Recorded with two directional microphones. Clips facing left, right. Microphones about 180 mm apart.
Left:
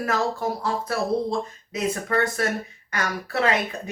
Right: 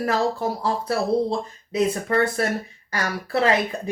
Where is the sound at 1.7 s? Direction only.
30° right (ahead or behind).